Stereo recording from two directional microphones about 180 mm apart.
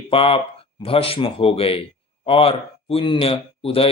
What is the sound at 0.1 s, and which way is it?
Speech, 30° left (ahead or behind).